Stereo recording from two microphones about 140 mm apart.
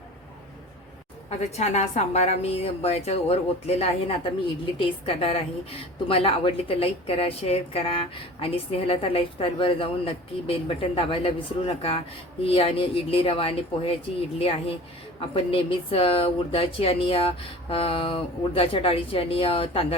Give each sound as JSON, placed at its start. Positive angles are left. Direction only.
{"t": 1.3, "sound": "a woman's voice", "side_deg": 55}